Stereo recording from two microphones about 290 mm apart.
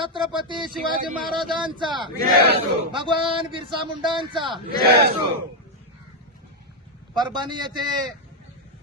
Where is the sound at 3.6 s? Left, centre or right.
Centre.